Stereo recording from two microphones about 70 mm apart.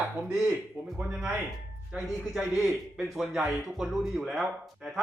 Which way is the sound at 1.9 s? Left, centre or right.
Centre.